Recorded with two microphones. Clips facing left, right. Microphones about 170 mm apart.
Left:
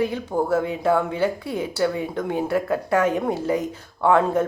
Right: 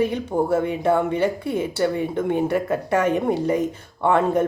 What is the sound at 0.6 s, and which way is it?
Speech, 60° right (ahead or behind).